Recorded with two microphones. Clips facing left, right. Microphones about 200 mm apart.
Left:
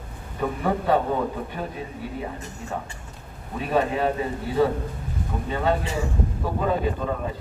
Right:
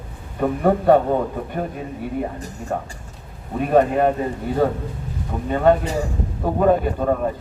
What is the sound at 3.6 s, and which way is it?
A man's voice, 50° right (ahead or behind).